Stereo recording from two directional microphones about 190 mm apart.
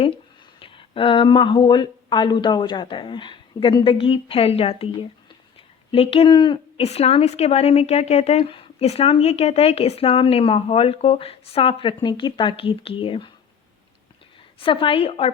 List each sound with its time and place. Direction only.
0.6 s a woman's voice: 25° left (ahead or behind)
14.6 s speech: 25° left (ahead or behind)